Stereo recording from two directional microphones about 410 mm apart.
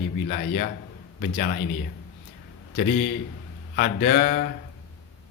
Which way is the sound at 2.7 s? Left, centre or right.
Left.